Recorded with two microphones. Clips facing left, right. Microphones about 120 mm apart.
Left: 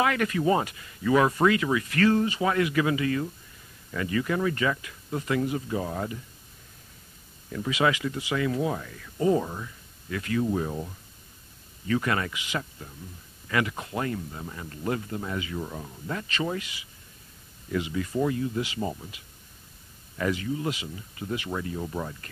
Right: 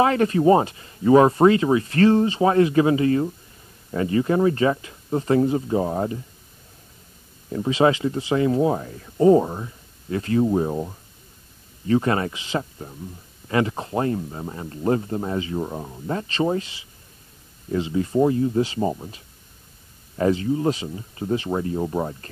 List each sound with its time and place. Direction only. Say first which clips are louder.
0.0 s speech: right 7 dB; 30° right (ahead or behind)
7.4 s speech: right 7 dB; 30° right (ahead or behind)